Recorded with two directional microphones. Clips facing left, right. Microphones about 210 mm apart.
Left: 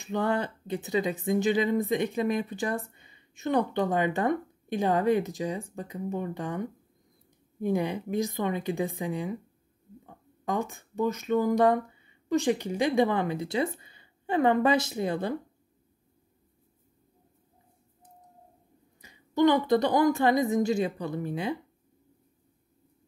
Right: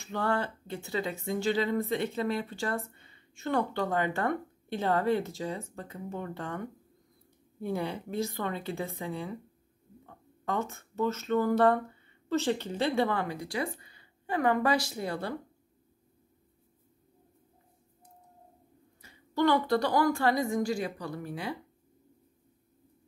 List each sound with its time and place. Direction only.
0.0 s a woman's voice: 20° left (ahead or behind)
18.9 s a woman's voice: 15° left (ahead or behind)